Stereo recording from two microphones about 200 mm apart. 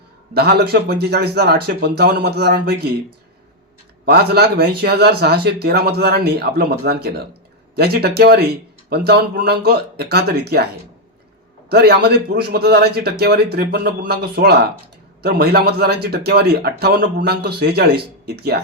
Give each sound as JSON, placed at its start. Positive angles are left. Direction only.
{"t": 0.3, "sound": "a man's voice", "side_deg": -50}
{"t": 4.0, "sound": "a man's voice", "side_deg": -55}
{"t": 11.7, "sound": "a man's voice", "side_deg": -55}